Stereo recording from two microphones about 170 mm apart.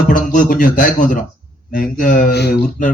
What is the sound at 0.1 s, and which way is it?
Speech, 55° left (ahead or behind).